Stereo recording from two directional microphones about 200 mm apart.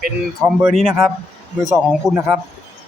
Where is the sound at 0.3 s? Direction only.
Centre (ahead or behind).